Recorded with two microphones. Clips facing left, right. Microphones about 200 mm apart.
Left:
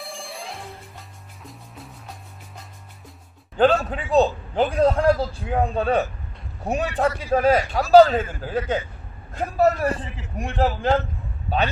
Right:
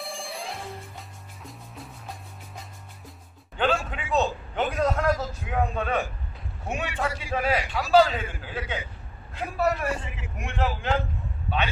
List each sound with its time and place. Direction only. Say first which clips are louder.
0.0 s music: even; centre (ahead or behind)
3.6 s a man's voice: left 7 dB; 40° left (ahead or behind)
11.4 s a sound: left 5 dB; 40° left (ahead or behind)